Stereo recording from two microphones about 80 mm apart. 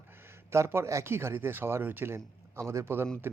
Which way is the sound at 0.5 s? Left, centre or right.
Right.